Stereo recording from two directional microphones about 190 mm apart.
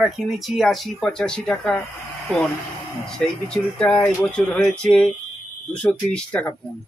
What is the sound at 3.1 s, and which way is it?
Speech, 5° left (ahead or behind).